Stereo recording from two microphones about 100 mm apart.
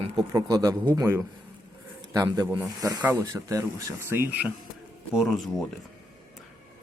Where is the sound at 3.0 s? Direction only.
20° right (ahead or behind).